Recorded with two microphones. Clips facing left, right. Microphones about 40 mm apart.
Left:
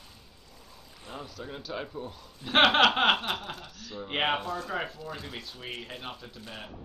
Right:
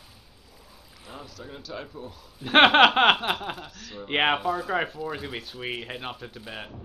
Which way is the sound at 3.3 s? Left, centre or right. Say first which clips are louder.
Right 5 dB; centre.